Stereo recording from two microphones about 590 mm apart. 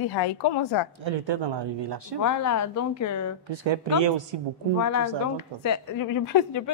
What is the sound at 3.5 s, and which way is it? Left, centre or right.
Speech, right.